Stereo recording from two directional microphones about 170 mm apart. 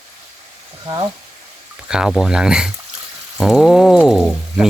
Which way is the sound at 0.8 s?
25° right (ahead or behind).